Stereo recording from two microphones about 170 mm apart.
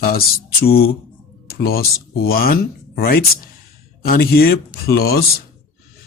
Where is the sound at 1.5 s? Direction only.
65° left (ahead or behind).